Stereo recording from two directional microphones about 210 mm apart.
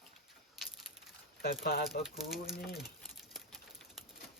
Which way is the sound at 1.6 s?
45° left (ahead or behind).